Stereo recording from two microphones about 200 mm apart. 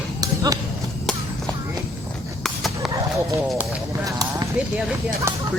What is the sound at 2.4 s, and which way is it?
Horse, centre (ahead or behind).